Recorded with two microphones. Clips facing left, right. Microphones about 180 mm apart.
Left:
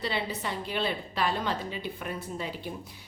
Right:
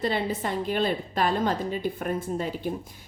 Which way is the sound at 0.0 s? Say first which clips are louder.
Right 5 dB; 50° right (ahead or behind).